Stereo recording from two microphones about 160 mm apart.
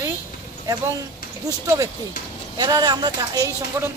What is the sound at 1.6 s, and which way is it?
Speech, 20° right (ahead or behind).